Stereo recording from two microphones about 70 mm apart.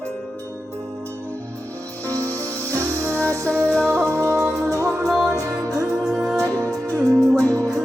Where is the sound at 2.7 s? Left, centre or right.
Right.